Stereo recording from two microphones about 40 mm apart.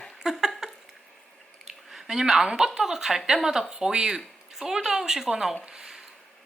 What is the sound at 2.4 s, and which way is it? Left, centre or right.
Speech, centre.